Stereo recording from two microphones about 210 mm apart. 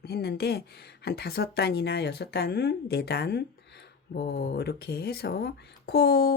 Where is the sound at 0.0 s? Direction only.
50° left (ahead or behind).